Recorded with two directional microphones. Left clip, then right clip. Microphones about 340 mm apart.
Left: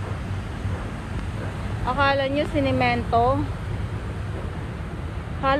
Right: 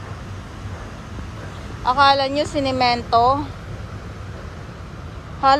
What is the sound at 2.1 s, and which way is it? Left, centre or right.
Speech, right.